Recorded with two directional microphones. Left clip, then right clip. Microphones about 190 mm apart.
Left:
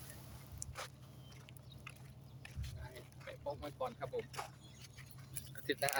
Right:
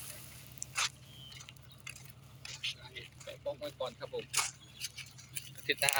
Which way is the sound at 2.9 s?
15° left (ahead or behind).